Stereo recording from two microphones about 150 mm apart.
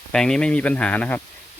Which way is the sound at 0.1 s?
5° left (ahead or behind).